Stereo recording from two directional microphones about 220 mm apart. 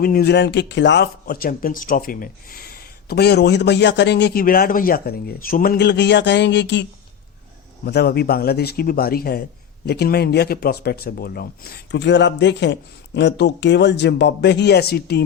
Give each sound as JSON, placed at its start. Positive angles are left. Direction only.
{"t": 0.0, "sound": "speech", "side_deg": 45}
{"t": 7.9, "sound": "speech", "side_deg": 45}